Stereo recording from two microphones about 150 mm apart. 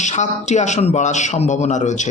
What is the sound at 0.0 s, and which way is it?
Speech, 50° left (ahead or behind).